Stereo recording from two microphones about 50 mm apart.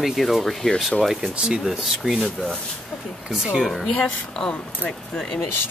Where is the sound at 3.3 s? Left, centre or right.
Centre.